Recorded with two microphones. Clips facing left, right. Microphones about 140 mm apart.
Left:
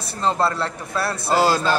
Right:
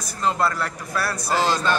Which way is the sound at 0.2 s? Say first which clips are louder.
Left 2 dB; 30° left (ahead or behind).